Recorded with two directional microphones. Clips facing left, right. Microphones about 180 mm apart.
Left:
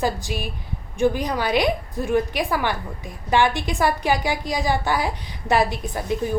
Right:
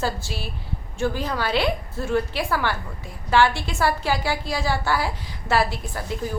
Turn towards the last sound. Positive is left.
turn(degrees=20)  # may be behind; listen again after turning